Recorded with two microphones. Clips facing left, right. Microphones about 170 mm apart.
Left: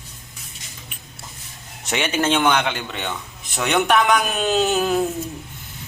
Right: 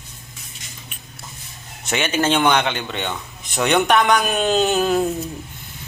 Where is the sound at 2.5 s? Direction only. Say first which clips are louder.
Right 2 dB; 5° left (ahead or behind).